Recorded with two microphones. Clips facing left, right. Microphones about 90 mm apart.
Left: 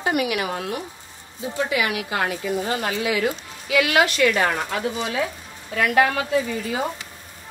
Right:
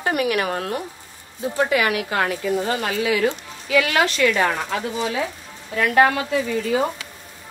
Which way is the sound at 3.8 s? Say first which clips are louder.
Left 4 dB; 35° right (ahead or behind).